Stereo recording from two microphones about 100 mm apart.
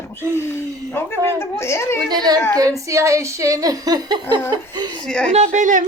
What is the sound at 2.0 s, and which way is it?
Speech, 45° right (ahead or behind).